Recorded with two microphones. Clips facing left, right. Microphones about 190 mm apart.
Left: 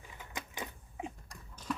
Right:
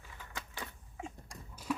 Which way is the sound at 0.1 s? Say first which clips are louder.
Left 2 dB; 15° left (ahead or behind).